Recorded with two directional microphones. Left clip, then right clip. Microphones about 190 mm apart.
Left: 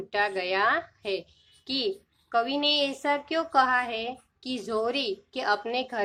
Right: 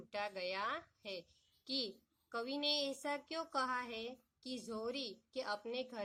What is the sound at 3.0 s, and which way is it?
Speech, 20° right (ahead or behind).